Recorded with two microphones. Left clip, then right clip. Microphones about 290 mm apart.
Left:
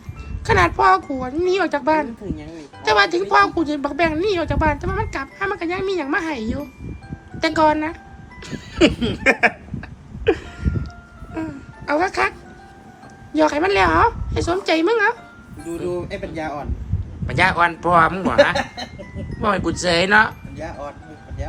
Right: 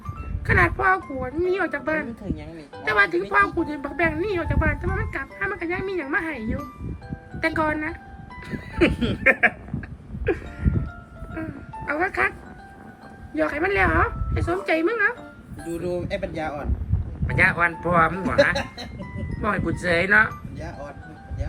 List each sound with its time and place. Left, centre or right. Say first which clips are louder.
0.4 s a woman's voice: left 5 dB; centre
10.2 s music: left 6 dB; centre
13.3 s a woman's voice: left 6 dB; centre
18.3 s a woman's voice: left 4 dB; centre
19.4 s a woman's voice: left 5 dB; centre